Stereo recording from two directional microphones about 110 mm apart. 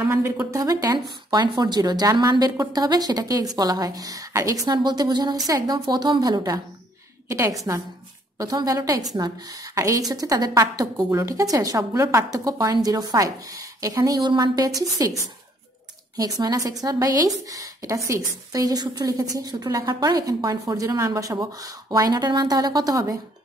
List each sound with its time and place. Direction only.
0.0 s a woman's voice: 20° right (ahead or behind)
0.6 s a woman's voice: 35° right (ahead or behind)
4.6 s a woman's voice: 40° right (ahead or behind)
7.2 s a woman's voice: 25° right (ahead or behind)